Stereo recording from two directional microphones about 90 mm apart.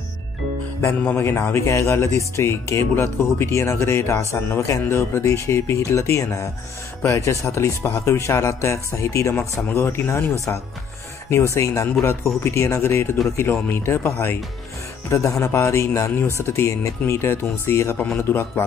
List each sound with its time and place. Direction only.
0.9 s speech: 25° left (ahead or behind)
11.5 s speech: 35° left (ahead or behind)
15.0 s speech: 35° left (ahead or behind)